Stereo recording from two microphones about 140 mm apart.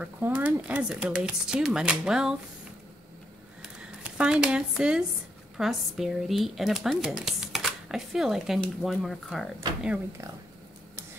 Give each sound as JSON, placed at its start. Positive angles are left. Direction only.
{"t": 0.0, "sound": "speech", "side_deg": -10}
{"t": 3.6, "sound": "a sound", "side_deg": -5}
{"t": 5.6, "sound": "speech", "side_deg": 0}